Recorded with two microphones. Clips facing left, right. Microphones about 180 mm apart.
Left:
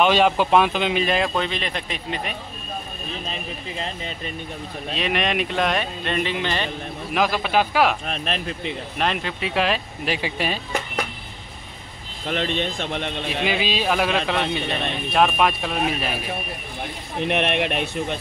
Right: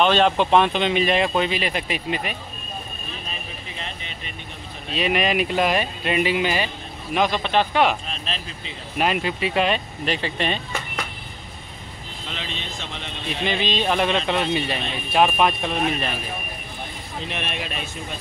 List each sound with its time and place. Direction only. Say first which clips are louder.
0.0 s speech: even; 10° left (ahead or behind)
4.9 s speech: right 2 dB; centre (ahead or behind)
7.1 s speech: right 1 dB; 5° left (ahead or behind)
8.1 s speech: left 5 dB; 60° left (ahead or behind)
8.9 s speech: right 4 dB; 5° right (ahead or behind)
12.3 s speech: left 10 dB; 55° left (ahead or behind)
13.4 s speech: even; 5° left (ahead or behind)
17.2 s speech: left 9 dB; 65° left (ahead or behind)